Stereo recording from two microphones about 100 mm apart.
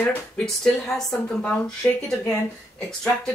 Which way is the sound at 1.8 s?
20° left (ahead or behind).